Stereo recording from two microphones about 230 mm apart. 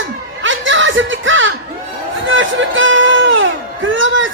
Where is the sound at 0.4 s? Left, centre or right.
Right.